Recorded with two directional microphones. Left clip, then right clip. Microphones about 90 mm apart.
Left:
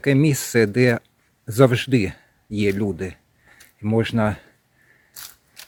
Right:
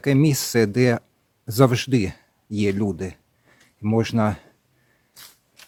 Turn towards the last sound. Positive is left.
turn(degrees=-25)  # may be behind; listen again after turning